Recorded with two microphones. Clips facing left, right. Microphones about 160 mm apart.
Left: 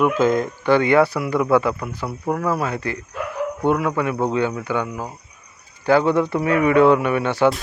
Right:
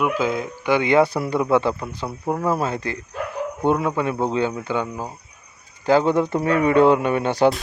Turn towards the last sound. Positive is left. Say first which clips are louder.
# even
turn(degrees=-40)  # may be behind; listen again after turning